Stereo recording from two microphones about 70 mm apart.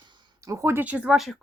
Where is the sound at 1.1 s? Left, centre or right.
Centre.